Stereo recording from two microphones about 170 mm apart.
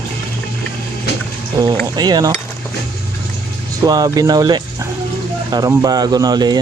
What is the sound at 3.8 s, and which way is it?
Speech, 25° right (ahead or behind).